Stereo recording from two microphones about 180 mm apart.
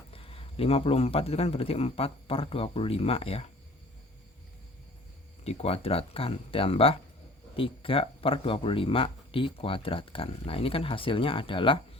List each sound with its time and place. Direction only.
0.1 s speech: 30° left (ahead or behind)
5.4 s speech: 35° left (ahead or behind)